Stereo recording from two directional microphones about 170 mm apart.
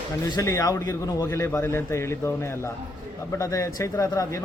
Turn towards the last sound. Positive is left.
turn(degrees=20)  # may be behind; listen again after turning